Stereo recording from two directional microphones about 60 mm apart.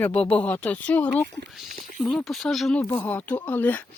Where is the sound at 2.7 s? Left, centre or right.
Left.